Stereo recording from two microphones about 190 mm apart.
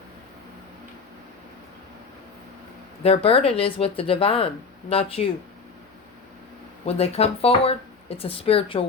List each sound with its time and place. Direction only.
3.0 s speech: 30° left (ahead or behind)
6.8 s speech: 30° left (ahead or behind)